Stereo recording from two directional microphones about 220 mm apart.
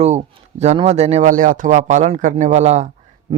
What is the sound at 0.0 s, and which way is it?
A man's voice, 30° right (ahead or behind).